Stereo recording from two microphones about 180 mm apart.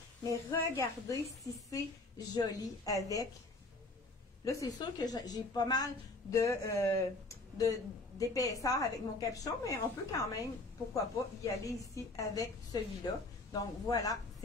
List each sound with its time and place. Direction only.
0.3 s a woman's voice: 15° left (ahead or behind)
4.5 s a woman's voice: 20° left (ahead or behind)